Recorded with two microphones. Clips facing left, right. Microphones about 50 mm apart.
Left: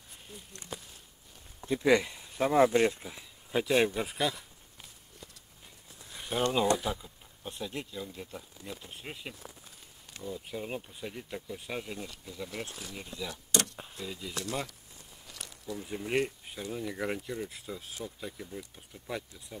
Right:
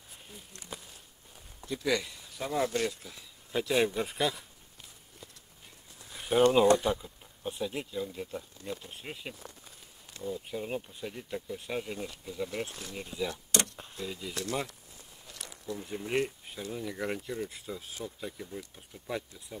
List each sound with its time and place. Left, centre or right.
0.3 s speech: centre
1.7 s speech: left
3.6 s speech: centre
6.0 s a sound: centre
6.5 s speech: centre
13.7 s vehicle: centre
15.2 s a sound: centre
16.7 s speech: centre